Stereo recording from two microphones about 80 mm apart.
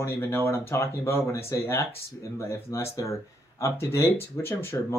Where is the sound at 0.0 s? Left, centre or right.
Left.